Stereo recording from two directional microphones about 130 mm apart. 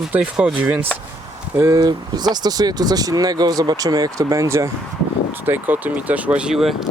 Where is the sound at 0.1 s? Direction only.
5° right (ahead or behind).